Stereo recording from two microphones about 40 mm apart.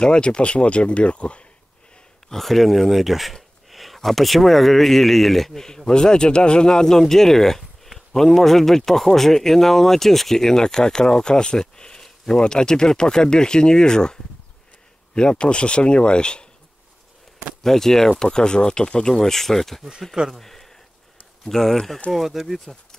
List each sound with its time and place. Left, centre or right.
0.0 s speech: left
2.2 s a man's voice: centre
5.9 s speech: centre
15.1 s speech: left
17.6 s speech: centre
20.3 s a sound: centre
21.5 s speech: centre
22.1 s a man's voice: centre